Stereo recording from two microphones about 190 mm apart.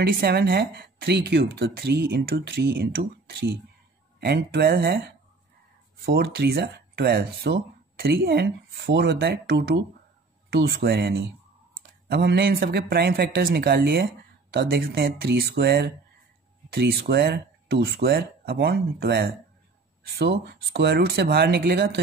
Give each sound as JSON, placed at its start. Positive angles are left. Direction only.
{"t": 0.0, "sound": "speech", "side_deg": -55}